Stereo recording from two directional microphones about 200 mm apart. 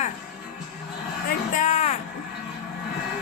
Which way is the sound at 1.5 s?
35° left (ahead or behind).